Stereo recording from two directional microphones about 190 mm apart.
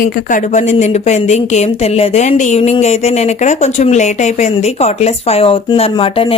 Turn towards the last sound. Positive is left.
turn(degrees=30)  # may be behind; listen again after turning